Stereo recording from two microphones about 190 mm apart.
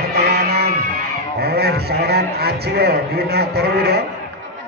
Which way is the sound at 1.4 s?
55° right (ahead or behind).